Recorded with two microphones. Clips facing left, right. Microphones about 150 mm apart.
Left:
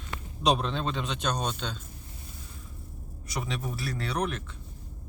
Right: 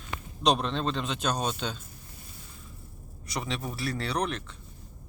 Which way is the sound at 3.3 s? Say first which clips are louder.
Even; centre (ahead or behind).